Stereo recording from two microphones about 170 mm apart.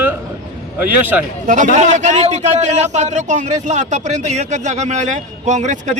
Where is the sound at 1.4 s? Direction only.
50° right (ahead or behind).